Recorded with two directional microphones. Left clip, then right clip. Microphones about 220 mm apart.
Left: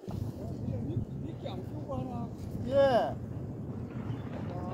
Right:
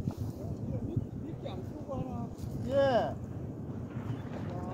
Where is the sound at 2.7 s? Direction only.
25° left (ahead or behind).